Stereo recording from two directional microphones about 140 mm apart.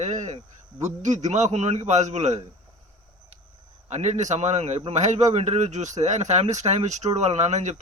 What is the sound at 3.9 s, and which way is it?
A man's voice, 55° right (ahead or behind).